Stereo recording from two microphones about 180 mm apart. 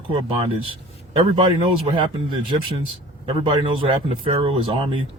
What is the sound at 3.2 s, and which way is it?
Speech, 30° right (ahead or behind).